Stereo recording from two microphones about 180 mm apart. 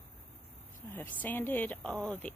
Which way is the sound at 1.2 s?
10° left (ahead or behind).